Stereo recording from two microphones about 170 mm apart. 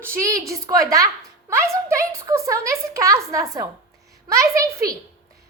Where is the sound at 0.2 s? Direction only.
20° right (ahead or behind).